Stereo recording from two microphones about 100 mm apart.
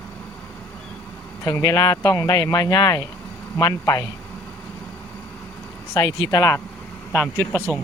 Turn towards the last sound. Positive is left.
turn(degrees=25)  # may be behind; listen again after turning